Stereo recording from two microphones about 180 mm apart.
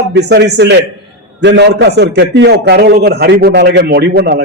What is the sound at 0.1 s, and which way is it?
A man's voice, 70° right (ahead or behind).